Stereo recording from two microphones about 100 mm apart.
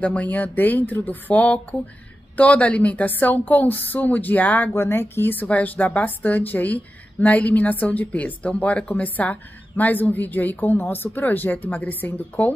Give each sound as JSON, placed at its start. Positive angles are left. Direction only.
{"t": 0.0, "sound": "a woman's voice", "side_deg": 15}